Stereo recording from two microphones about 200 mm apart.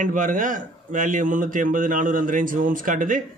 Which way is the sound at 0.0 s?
40° right (ahead or behind).